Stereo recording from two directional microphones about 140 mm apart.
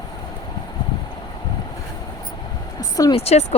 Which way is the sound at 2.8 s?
25° left (ahead or behind).